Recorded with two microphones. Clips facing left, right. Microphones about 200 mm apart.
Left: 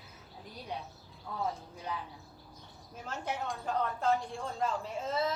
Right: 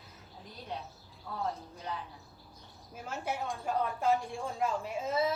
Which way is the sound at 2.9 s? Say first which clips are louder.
Right 1 dB; 10° right (ahead or behind).